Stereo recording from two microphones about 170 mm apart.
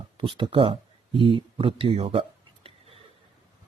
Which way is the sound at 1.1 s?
30° right (ahead or behind).